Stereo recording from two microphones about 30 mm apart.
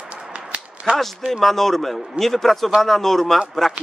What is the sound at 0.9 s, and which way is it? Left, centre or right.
Speech, right.